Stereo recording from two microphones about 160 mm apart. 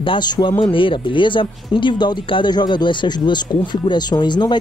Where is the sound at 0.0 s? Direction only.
30° left (ahead or behind).